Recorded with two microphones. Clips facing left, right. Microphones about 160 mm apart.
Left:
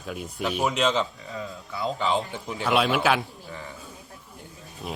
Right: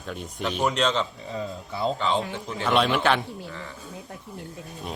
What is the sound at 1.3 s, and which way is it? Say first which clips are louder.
Speech: right 3 dB; 30° right (ahead or behind).